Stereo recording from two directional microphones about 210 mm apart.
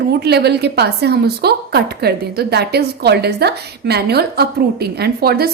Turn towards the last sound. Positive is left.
turn(degrees=-50)  # may be behind; listen again after turning